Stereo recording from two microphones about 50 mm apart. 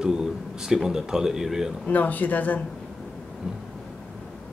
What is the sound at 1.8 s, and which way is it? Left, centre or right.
Speech, left.